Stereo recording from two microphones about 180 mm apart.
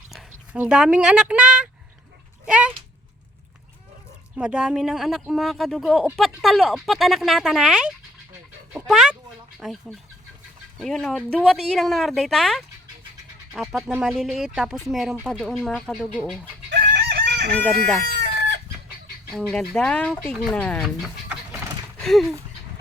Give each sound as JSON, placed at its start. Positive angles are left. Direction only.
{"t": 0.1, "sound": "speech", "side_deg": -5}
{"t": 4.4, "sound": "speech", "side_deg": -5}
{"t": 16.6, "sound": "chicken", "side_deg": -70}
{"t": 17.6, "sound": "speech", "side_deg": 0}
{"t": 18.2, "sound": "chicken", "side_deg": -70}
{"t": 19.3, "sound": "speech", "side_deg": 5}